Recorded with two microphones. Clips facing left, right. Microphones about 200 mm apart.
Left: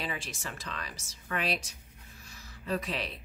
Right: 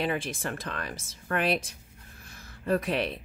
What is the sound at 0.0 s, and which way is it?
Speech, 55° right (ahead or behind).